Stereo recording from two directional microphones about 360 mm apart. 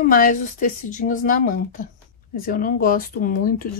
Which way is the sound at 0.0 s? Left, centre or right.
Left.